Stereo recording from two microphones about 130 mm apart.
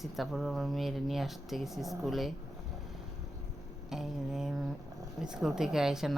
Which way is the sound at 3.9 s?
5° right (ahead or behind).